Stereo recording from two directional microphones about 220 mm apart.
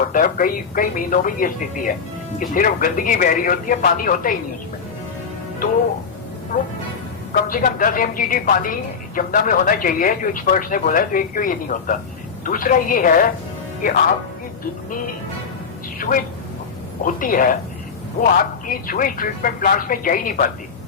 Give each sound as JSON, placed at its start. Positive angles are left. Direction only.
{"t": 0.1, "sound": "speech", "side_deg": 40}
{"t": 5.6, "sound": "speech", "side_deg": 40}
{"t": 16.0, "sound": "speech", "side_deg": 40}
{"t": 18.7, "sound": "speech", "side_deg": 40}